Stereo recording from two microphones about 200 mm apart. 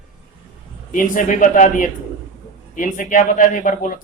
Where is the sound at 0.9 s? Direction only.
40° left (ahead or behind).